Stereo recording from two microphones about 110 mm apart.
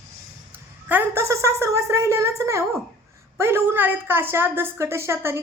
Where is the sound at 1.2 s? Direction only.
25° right (ahead or behind).